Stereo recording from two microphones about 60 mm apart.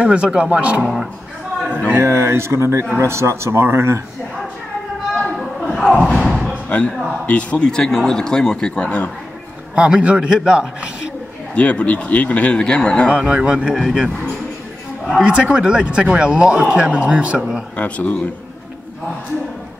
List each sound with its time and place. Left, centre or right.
0.0 s speech: centre
1.9 s speech: right
5.1 s a sound: centre
5.9 s speech: centre
9.8 s speech: centre
11.5 s speech: left
13.3 s speech: centre
17.7 s speech: left